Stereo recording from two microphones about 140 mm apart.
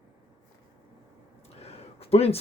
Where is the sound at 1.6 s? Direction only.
45° left (ahead or behind).